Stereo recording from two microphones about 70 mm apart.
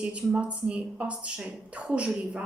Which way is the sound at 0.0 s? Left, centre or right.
Centre.